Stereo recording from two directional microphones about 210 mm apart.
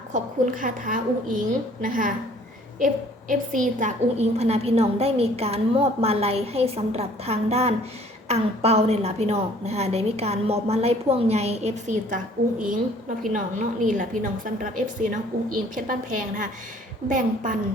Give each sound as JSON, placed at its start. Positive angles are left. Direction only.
{"t": 0.1, "sound": "a woman's voice", "side_deg": -40}
{"t": 15.7, "sound": "a woman's voice", "side_deg": -40}